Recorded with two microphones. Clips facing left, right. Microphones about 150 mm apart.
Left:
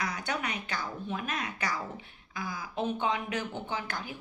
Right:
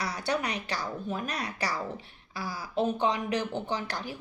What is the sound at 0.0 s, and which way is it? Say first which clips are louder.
Speech: right 3 dB; 35° right (ahead or behind).